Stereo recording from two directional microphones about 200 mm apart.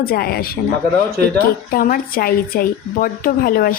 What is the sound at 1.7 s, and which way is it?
A woman's voice, 45° left (ahead or behind).